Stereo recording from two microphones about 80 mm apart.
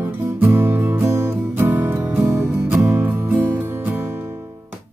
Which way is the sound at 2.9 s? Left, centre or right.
Right.